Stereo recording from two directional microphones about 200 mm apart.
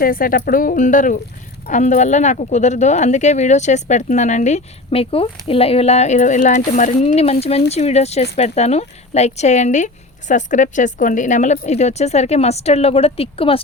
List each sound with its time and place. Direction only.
0.0 s speech: 45° left (ahead or behind); by 13.6 s 30° left (ahead or behind)